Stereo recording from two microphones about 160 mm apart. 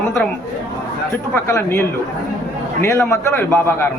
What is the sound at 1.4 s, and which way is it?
A man's voice, 15° left (ahead or behind).